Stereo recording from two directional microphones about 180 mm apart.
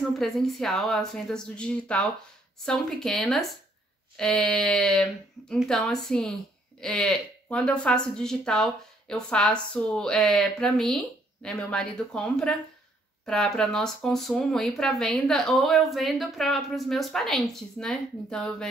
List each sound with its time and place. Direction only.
0.2 s a woman's voice: centre (ahead or behind)